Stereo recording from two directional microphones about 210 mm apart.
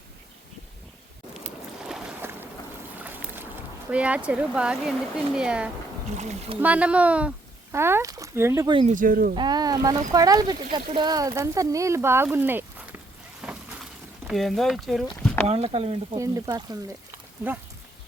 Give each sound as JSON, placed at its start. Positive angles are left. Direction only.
{"t": 1.9, "sound": "boat", "side_deg": -5}
{"t": 3.9, "sound": "speech", "side_deg": -5}
{"t": 6.1, "sound": "speech", "side_deg": -35}
{"t": 6.6, "sound": "speech", "side_deg": -5}
{"t": 8.9, "sound": "speech", "side_deg": -40}
{"t": 9.3, "sound": "speech", "side_deg": -20}
{"t": 13.4, "sound": "a sound", "side_deg": -5}
{"t": 14.3, "sound": "speech", "side_deg": 0}
{"t": 15.4, "sound": "speech", "side_deg": -30}
{"t": 16.1, "sound": "speech", "side_deg": -15}